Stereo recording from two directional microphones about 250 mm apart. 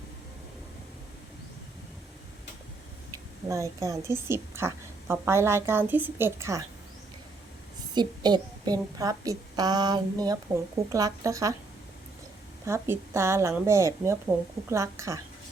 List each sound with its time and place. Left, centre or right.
3.5 s a woman's voice: centre
7.9 s a woman's voice: centre
12.6 s a woman's voice: centre